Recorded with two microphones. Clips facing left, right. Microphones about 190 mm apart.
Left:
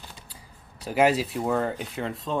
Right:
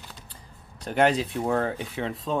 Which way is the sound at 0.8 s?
5° left (ahead or behind).